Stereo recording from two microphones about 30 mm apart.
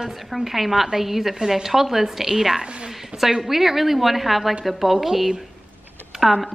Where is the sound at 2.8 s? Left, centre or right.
Centre.